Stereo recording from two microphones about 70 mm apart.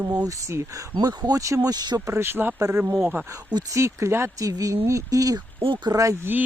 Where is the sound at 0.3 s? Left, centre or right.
Right.